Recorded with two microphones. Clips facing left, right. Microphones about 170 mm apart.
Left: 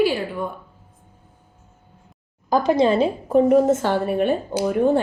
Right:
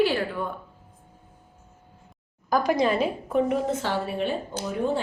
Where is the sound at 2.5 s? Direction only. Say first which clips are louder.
Left 5 dB; 25° left (ahead or behind).